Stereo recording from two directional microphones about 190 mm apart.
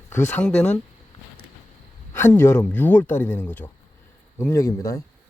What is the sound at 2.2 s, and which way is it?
Speech, 15° left (ahead or behind).